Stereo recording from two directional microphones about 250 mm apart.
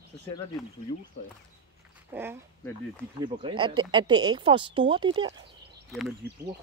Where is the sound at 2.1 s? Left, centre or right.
Centre.